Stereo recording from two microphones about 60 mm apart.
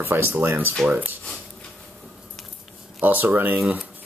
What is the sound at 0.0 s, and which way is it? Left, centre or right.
Speech, right.